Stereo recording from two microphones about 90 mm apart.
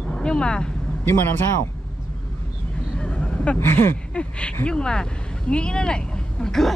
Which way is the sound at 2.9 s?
10° left (ahead or behind).